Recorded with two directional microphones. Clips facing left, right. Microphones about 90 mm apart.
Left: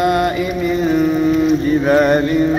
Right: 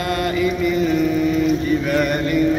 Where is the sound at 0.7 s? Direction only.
40° left (ahead or behind).